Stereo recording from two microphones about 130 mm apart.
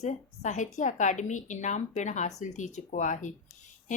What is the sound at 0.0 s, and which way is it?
Speech, 65° left (ahead or behind).